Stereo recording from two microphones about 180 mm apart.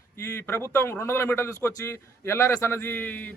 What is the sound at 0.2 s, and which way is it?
A man's voice, 15° left (ahead or behind).